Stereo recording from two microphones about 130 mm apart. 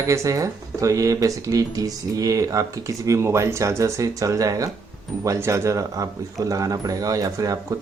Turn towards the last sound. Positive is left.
turn(degrees=-30)  # may be behind; listen again after turning